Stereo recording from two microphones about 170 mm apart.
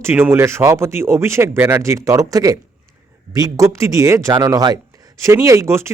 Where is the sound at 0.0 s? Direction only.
15° right (ahead or behind).